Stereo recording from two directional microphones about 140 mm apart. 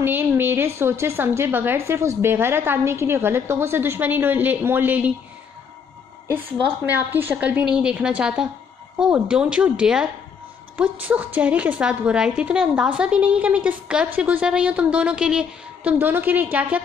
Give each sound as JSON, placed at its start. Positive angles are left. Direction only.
{"t": 0.0, "sound": "a woman's voice", "side_deg": -15}
{"t": 6.2, "sound": "a woman's voice", "side_deg": -15}